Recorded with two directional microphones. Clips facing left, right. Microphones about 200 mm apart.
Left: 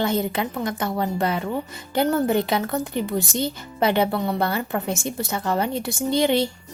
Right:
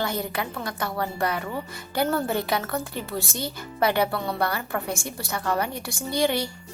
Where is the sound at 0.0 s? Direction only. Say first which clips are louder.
Left 5 dB; 20° left (ahead or behind).